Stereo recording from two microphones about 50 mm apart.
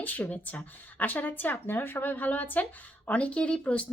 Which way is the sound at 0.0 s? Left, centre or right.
Left.